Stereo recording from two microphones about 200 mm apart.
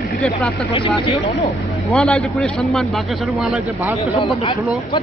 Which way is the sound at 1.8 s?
5° left (ahead or behind).